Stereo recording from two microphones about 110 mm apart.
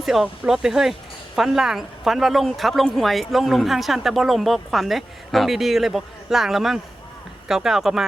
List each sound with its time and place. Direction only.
0.0 s speech: 5° right (ahead or behind)